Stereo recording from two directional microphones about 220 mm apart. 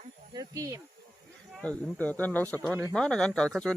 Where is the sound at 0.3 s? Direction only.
15° right (ahead or behind).